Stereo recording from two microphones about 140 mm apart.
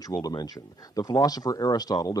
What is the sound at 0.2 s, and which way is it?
Speech, 25° left (ahead or behind).